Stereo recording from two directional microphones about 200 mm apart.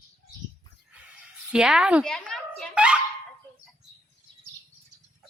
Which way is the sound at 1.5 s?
5° right (ahead or behind).